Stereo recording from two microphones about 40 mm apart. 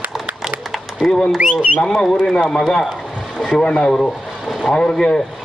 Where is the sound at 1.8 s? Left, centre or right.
Centre.